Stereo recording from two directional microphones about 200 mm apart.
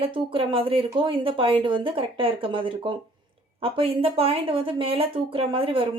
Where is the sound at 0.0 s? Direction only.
25° right (ahead or behind).